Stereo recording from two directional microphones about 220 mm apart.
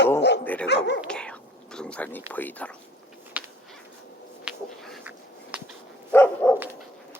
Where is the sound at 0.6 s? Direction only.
50° left (ahead or behind).